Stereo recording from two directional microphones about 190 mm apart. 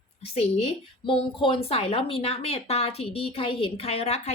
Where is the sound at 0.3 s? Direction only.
30° left (ahead or behind).